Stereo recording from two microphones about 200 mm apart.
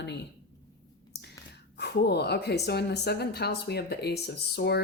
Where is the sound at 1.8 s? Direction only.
55° left (ahead or behind).